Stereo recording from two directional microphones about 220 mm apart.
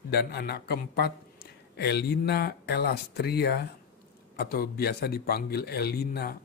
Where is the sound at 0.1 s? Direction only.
45° left (ahead or behind).